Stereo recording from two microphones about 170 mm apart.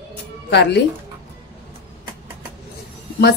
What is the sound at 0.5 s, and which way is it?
Speech, 90° left.